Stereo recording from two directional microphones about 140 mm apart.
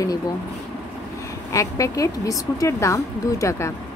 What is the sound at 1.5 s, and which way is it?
Speech, 25° left (ahead or behind).